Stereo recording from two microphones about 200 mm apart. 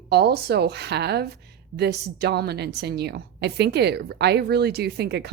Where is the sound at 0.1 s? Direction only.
55° right (ahead or behind).